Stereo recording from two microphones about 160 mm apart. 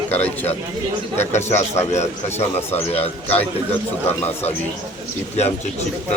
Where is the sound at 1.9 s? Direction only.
45° left (ahead or behind).